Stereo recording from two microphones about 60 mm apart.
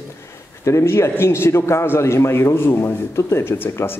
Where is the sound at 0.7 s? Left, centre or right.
Left.